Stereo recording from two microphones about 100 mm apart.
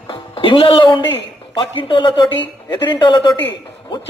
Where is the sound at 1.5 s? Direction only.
55° left (ahead or behind).